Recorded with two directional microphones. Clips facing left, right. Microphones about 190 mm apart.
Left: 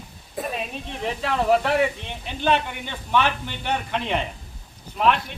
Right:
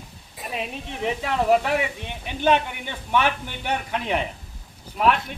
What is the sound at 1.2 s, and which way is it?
Speech, 10° right (ahead or behind).